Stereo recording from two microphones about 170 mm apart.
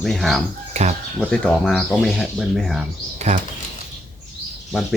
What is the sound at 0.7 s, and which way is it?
Bird, 40° right (ahead or behind).